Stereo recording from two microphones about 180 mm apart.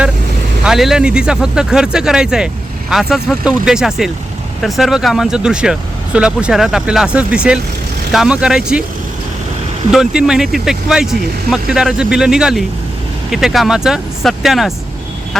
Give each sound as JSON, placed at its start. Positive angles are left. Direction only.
{"t": 0.6, "sound": "speech", "side_deg": 0}
{"t": 9.9, "sound": "speech", "side_deg": -5}